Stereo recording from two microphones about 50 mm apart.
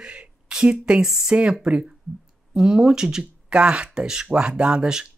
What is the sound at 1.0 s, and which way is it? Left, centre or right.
Speech, centre.